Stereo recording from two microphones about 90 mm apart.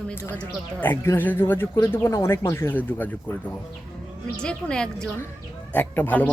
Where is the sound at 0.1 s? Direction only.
25° left (ahead or behind).